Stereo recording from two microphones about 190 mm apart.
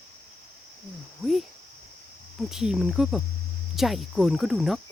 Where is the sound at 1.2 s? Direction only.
5° left (ahead or behind).